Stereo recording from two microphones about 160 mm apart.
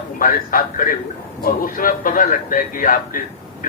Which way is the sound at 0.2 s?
60° left (ahead or behind).